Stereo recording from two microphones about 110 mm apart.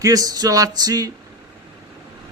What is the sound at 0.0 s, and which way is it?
Speech, 35° right (ahead or behind).